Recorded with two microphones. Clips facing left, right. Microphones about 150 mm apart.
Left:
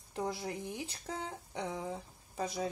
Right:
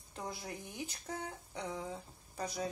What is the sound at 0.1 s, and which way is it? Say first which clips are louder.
Speech: left 6 dB; 30° left (ahead or behind).